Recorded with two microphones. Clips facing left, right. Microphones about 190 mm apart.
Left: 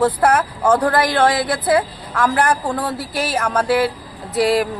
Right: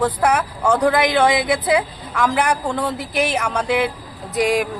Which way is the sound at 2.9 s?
20° right (ahead or behind).